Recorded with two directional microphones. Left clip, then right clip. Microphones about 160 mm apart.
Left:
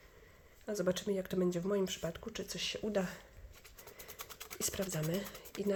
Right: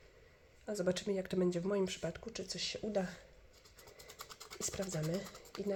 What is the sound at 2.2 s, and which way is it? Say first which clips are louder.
Speech: left 1 dB; 15° left (ahead or behind).